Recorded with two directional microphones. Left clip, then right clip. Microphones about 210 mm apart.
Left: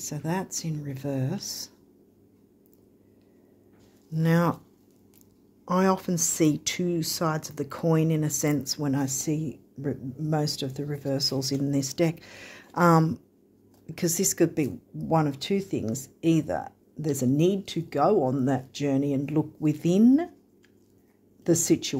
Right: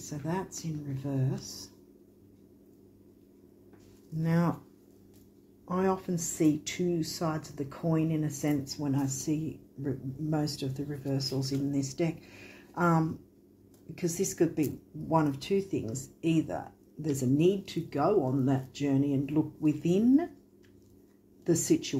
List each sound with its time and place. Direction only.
0.0 s speech: 55° left (ahead or behind)
4.2 s speech: 45° left (ahead or behind)
5.7 s speech: 55° left (ahead or behind)
21.5 s speech: 55° left (ahead or behind)